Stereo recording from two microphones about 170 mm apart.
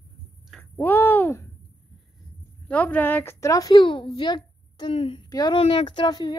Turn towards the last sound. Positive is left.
turn(degrees=25)  # may be behind; listen again after turning